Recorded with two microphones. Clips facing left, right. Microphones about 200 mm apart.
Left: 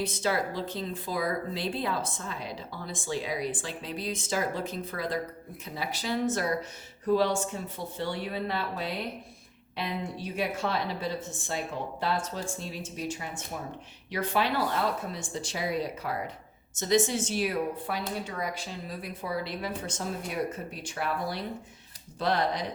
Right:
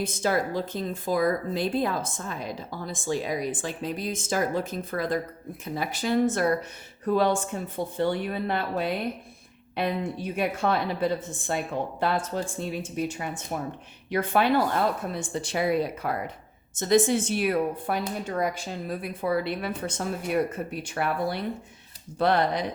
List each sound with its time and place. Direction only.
0.0 s a woman's voice: 50° right (ahead or behind)